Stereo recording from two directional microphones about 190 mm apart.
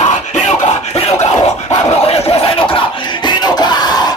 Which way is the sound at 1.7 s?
30° left (ahead or behind).